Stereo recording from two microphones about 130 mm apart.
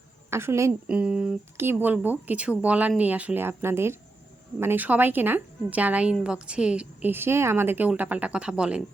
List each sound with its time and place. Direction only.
0.3 s a woman's voice: 20° right (ahead or behind)
0.9 s a woman's voice: 10° right (ahead or behind)